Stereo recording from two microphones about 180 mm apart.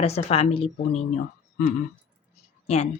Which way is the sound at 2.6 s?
35° left (ahead or behind).